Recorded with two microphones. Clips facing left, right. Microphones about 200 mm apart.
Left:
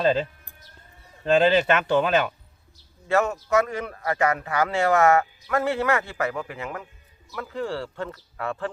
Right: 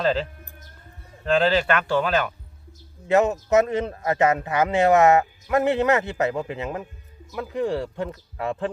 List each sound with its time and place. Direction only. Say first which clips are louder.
0.0 s speech: left 1 dB; 15° left (ahead or behind)
3.1 s speech: right 3 dB; 20° right (ahead or behind)